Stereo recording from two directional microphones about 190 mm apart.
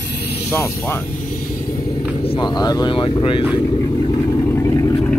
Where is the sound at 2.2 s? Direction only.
20° left (ahead or behind).